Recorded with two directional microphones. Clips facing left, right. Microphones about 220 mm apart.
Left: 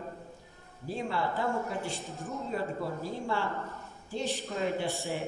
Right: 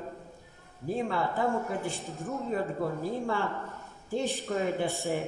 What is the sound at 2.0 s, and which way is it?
Speech, centre (ahead or behind).